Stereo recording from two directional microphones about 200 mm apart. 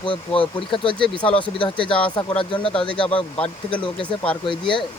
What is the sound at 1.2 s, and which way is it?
Speech, 5° left (ahead or behind).